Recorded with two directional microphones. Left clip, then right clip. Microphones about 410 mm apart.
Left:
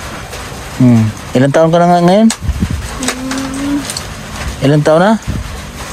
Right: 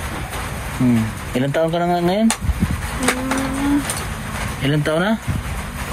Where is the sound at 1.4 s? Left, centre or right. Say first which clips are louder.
Left 10 dB; left.